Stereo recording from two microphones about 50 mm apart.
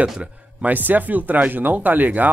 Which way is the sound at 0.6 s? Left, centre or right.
Right.